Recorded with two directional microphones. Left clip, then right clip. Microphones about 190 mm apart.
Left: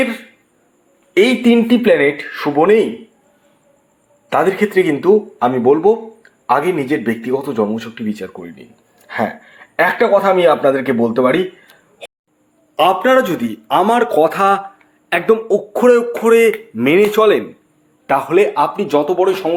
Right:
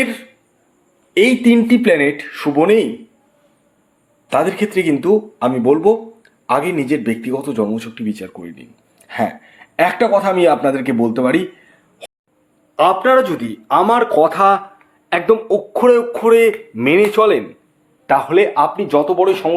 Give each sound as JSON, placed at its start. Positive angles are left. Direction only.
{"t": 1.1, "sound": "speech", "side_deg": -5}
{"t": 4.3, "sound": "speech", "side_deg": -15}
{"t": 12.7, "sound": "speech", "side_deg": 20}